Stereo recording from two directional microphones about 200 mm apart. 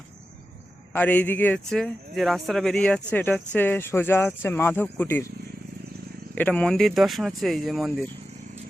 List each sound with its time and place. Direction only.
0.9 s a man's voice: 10° left (ahead or behind)
6.3 s speech: 5° left (ahead or behind)